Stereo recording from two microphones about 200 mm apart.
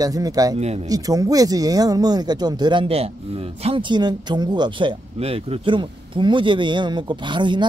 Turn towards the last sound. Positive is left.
turn(degrees=-25)  # may be behind; listen again after turning